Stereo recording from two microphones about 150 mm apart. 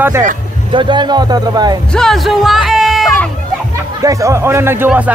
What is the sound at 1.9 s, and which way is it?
Speech, 5° left (ahead or behind).